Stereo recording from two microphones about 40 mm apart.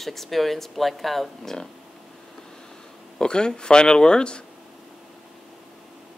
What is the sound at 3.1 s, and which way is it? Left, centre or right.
Speech, left.